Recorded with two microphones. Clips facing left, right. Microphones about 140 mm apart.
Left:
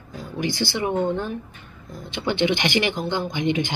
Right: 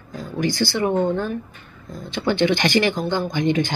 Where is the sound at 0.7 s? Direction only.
15° left (ahead or behind).